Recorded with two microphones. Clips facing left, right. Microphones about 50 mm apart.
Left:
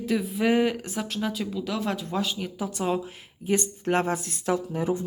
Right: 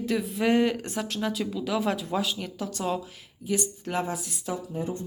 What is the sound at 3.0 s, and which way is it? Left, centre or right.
Speech, left.